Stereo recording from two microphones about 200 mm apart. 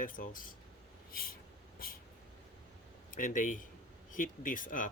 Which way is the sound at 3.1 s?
40° left (ahead or behind).